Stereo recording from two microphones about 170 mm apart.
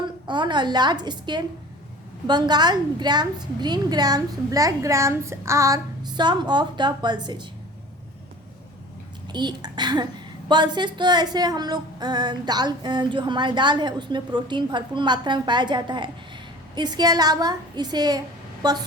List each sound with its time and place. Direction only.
0.0 s female singing: 25° right (ahead or behind)
9.3 s female singing: 25° right (ahead or behind)